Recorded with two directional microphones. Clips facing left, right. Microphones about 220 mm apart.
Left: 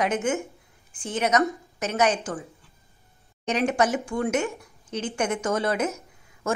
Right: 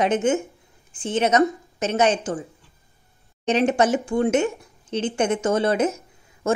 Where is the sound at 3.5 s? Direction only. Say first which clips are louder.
Right 4 dB; 25° right (ahead or behind).